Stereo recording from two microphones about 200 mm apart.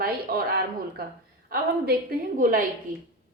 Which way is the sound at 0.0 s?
50° right (ahead or behind).